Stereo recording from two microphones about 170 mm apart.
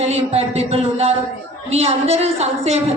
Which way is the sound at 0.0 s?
40° right (ahead or behind).